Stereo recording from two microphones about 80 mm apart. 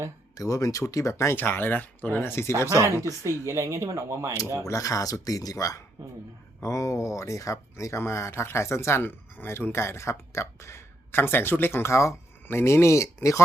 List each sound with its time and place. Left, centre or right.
0.3 s speech: left
1.4 s speech: left
3.4 s speech: right
4.6 s speech: left